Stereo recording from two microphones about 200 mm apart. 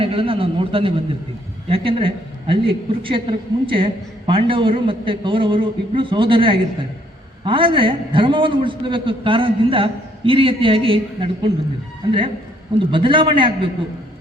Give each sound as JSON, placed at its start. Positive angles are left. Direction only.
{"t": 0.0, "sound": "a woman's voice", "side_deg": -25}
{"t": 12.8, "sound": "a woman's voice", "side_deg": -25}